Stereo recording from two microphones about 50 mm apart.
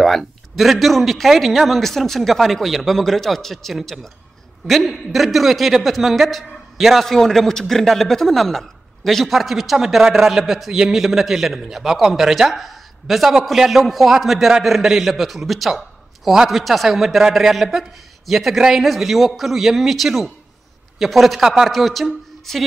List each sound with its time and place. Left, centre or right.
0.0 s a woman's voice: centre